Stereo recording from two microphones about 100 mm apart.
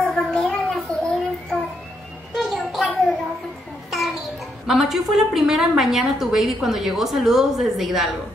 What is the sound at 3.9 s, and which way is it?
A child's voice, centre (ahead or behind).